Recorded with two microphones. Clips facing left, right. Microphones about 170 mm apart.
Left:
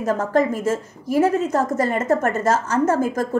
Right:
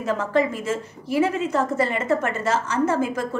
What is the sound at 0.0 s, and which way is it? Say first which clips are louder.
A woman's voice: left 3 dB; 45° left (ahead or behind).